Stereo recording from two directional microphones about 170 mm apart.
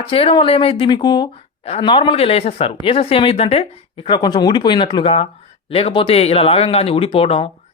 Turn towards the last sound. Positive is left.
turn(degrees=35)  # may be behind; listen again after turning